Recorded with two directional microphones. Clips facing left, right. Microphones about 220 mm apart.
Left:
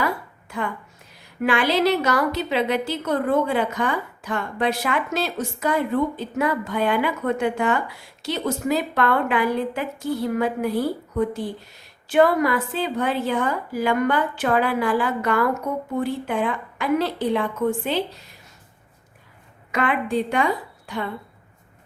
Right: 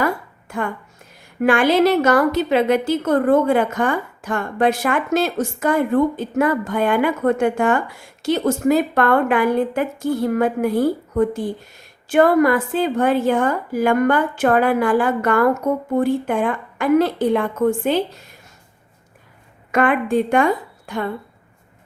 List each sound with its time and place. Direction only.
0.0 s a sound: 50° right (ahead or behind)
1.4 s a woman's voice: 50° right (ahead or behind)
19.7 s a woman's voice: 50° right (ahead or behind)